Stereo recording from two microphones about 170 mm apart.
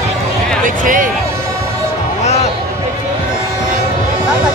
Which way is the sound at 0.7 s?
50° right (ahead or behind).